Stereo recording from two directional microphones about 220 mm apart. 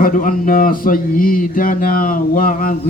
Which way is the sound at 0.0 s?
40° left (ahead or behind).